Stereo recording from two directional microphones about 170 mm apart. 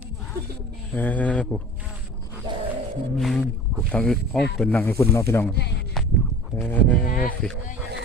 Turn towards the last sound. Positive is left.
turn(degrees=55)  # may be behind; listen again after turning